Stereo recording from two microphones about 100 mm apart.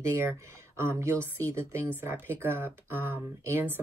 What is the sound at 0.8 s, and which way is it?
Speech, 30° right (ahead or behind).